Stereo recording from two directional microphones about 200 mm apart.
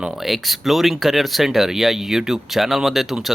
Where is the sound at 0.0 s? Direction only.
Centre (ahead or behind).